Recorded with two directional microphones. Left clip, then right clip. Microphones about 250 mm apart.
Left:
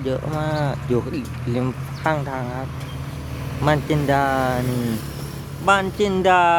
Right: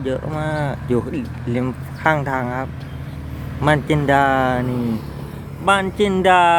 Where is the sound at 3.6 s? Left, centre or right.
Centre.